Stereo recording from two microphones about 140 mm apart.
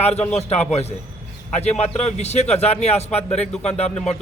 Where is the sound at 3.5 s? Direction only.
5° left (ahead or behind).